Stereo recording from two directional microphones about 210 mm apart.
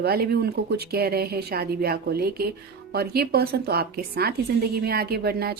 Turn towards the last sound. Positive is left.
turn(degrees=-45)  # may be behind; listen again after turning